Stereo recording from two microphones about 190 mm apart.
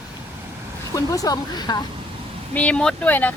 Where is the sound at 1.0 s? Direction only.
20° left (ahead or behind).